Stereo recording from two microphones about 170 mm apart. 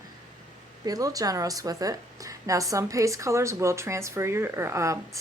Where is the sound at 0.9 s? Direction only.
20° right (ahead or behind).